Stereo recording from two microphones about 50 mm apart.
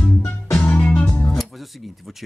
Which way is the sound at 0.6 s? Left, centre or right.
Left.